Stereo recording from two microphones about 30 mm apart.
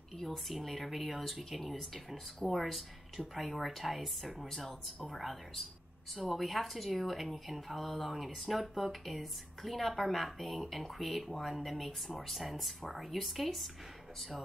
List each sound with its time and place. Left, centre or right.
0.2 s speech: centre